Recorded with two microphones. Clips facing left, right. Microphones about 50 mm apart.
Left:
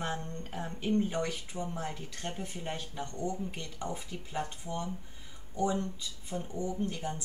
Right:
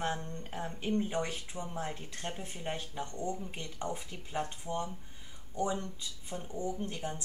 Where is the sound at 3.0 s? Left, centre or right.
Right.